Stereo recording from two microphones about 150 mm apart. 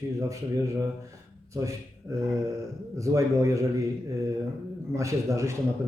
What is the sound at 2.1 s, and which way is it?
A man's voice, 20° right (ahead or behind).